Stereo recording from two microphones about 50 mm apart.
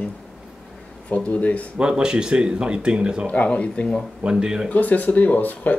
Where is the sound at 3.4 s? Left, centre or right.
Left.